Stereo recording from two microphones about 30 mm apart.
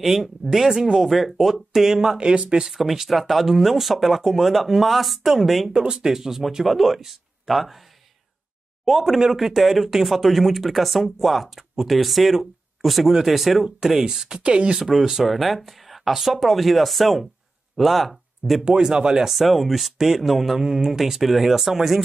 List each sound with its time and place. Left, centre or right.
0.0 s speech: centre
2.1 s speech: right
2.6 s speech: centre
5.7 s speech: centre
6.6 s speech: centre
9.1 s speech: centre
14.2 s speech: right
14.8 s speech: centre
18.6 s speech: right
19.3 s speech: centre
20.5 s speech: centre
21.0 s speech: centre